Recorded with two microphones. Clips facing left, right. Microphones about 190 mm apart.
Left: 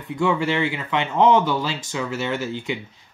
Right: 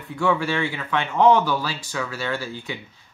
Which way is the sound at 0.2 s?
20° left (ahead or behind).